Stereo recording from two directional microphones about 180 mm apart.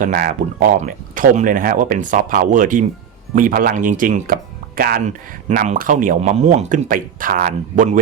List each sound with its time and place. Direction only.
0.0 s speech: 50° right (ahead or behind)